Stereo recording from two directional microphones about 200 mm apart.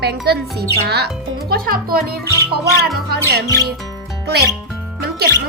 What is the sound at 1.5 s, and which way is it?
Speech, 50° right (ahead or behind).